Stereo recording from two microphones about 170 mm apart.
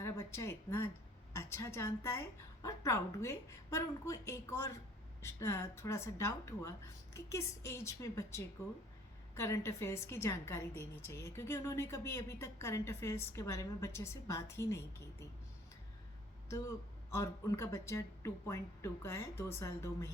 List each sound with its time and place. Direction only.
0.0 s a woman's voice: 15° left (ahead or behind)
16.5 s a woman's voice: 15° left (ahead or behind)